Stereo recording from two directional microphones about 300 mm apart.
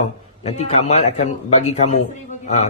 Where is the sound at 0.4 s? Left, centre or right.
Left.